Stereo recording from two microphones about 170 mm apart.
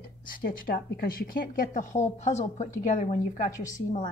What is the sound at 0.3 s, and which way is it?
A woman's voice, 55° left (ahead or behind).